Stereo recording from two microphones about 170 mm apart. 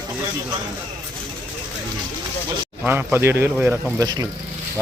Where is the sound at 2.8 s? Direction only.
10° right (ahead or behind).